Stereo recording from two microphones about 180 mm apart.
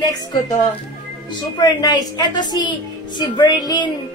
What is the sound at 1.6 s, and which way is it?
A woman's voice, 20° left (ahead or behind).